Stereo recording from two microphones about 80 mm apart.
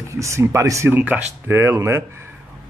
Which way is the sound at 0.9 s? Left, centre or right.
Right.